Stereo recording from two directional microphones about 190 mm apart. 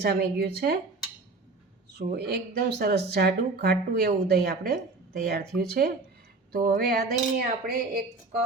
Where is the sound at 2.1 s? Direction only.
55° right (ahead or behind).